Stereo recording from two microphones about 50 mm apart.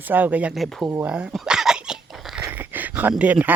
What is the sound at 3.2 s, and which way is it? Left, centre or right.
Speech, right.